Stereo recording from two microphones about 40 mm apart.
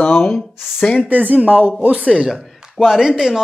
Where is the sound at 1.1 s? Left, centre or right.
Right.